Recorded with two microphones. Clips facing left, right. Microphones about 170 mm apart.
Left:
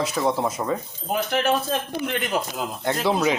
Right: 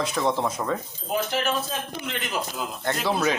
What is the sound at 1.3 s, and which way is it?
Speech, 55° left (ahead or behind).